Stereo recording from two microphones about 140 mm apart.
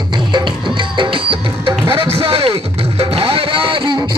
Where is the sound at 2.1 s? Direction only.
40° right (ahead or behind).